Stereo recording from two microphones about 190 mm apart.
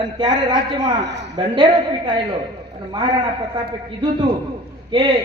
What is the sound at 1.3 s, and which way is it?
Speech, 35° right (ahead or behind).